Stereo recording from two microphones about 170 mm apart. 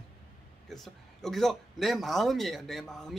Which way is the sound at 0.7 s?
Centre (ahead or behind).